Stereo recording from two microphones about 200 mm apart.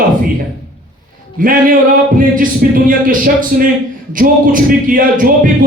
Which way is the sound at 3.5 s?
45° right (ahead or behind).